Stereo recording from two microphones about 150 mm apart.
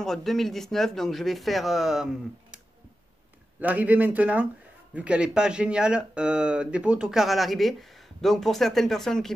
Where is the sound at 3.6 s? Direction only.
10° right (ahead or behind).